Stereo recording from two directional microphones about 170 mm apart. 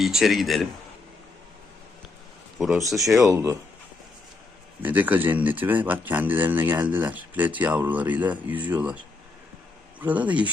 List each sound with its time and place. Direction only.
0.0 s a man's voice: centre (ahead or behind)
2.6 s a man's voice: 5° right (ahead or behind)
3.2 s speech: 20° right (ahead or behind)
4.8 s speech: 10° right (ahead or behind)
10.0 s speech: 10° right (ahead or behind)